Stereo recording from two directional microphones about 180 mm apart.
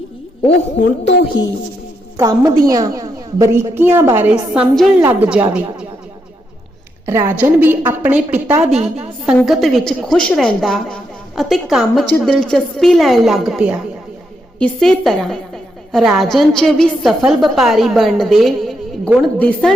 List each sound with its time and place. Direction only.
1.3 s a woman's voice: 25° left (ahead or behind)
2.1 s a woman's voice: 20° right (ahead or behind); by 4.9 s centre (ahead or behind)
4.9 s a woman's voice: 15° right (ahead or behind)
7.0 s a woman's voice: 15° right (ahead or behind); by 19.7 s 5° left (ahead or behind)